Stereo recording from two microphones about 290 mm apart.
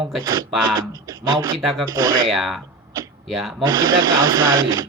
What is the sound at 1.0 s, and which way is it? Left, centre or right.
Speech, centre.